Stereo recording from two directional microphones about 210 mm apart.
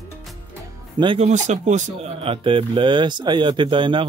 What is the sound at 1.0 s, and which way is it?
Speech, 25° right (ahead or behind).